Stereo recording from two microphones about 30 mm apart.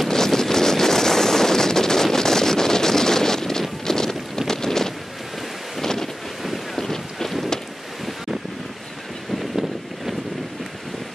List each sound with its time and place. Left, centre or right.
0.1 s wind noise: centre
3.8 s a sound: centre
5.8 s wind noise: centre
6.4 s boat: centre
6.8 s wind noise: centre
9.3 s boat: centre